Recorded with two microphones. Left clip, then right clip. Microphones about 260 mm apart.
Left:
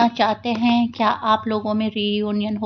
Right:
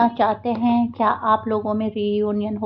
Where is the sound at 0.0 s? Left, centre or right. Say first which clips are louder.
Even; left.